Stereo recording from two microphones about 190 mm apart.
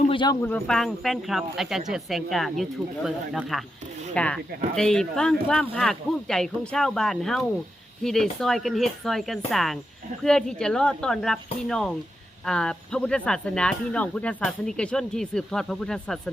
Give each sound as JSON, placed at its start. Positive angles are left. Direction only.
{"t": 0.1, "sound": "speech", "side_deg": 25}
{"t": 0.4, "sound": "speech", "side_deg": 5}